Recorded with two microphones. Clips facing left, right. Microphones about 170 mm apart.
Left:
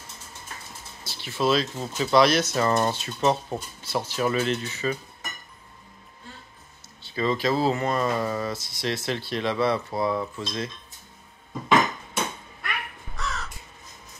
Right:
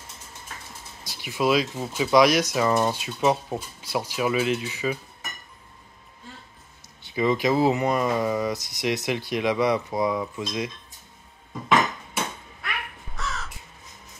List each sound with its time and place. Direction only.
1.0 s speech: 15° right (ahead or behind)
7.1 s speech: 15° right (ahead or behind)
13.1 s crow: centre (ahead or behind)